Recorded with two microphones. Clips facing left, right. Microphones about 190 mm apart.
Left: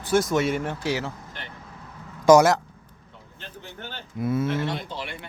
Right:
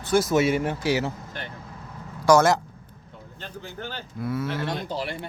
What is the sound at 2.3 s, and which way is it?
Speech, 20° left (ahead or behind).